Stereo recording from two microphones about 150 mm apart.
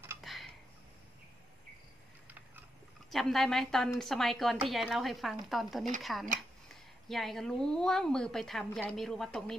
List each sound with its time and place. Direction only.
0.2 s tick-tock: centre (ahead or behind)
2.2 s a sound: 10° right (ahead or behind)
3.1 s a woman's voice: centre (ahead or behind)